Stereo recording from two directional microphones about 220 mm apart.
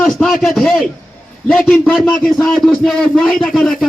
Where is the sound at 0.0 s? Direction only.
5° left (ahead or behind).